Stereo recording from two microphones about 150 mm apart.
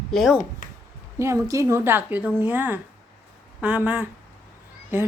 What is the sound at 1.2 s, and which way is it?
A woman's voice, 20° right (ahead or behind).